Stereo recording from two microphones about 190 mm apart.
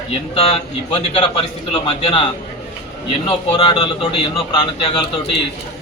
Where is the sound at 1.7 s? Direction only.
25° left (ahead or behind).